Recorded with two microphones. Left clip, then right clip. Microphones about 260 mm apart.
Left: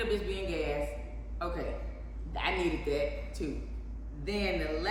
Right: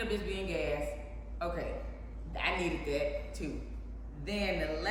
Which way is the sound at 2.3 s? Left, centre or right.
Centre.